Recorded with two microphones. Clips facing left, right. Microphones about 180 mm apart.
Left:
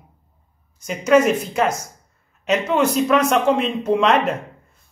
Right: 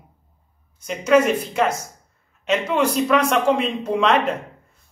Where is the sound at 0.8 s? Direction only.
5° left (ahead or behind).